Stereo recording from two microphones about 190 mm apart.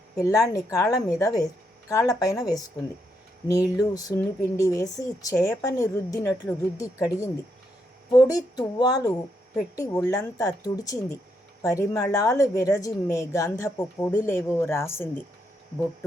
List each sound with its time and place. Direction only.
0.2 s a woman's voice: 15° left (ahead or behind)
3.8 s a woman's voice: 20° left (ahead or behind)